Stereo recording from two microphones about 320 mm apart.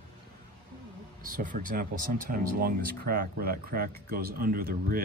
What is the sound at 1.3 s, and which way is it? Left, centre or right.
Speech, right.